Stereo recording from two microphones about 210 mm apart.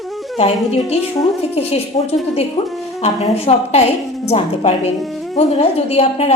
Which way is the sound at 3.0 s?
30° left (ahead or behind).